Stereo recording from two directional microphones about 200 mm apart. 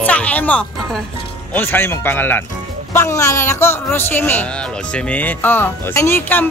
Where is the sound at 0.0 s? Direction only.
5° left (ahead or behind).